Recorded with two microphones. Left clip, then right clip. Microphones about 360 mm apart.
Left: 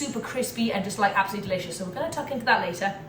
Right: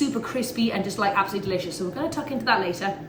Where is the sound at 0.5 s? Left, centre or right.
Centre.